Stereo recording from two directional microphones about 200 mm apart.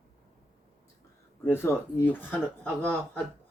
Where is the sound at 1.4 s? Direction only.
10° left (ahead or behind).